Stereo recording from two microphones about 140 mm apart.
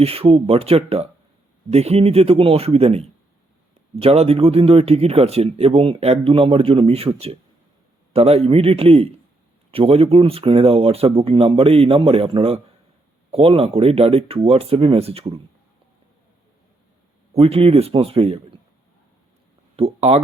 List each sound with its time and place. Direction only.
0.0 s speech: 45° right (ahead or behind)
17.3 s speech: 45° right (ahead or behind)
19.7 s speech: 45° right (ahead or behind)